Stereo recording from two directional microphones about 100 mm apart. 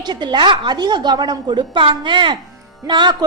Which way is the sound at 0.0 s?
50° right (ahead or behind).